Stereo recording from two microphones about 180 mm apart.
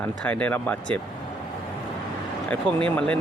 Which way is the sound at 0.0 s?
10° left (ahead or behind).